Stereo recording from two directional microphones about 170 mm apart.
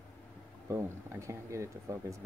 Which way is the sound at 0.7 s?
15° right (ahead or behind).